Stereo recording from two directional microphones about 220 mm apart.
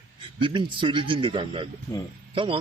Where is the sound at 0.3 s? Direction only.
20° right (ahead or behind).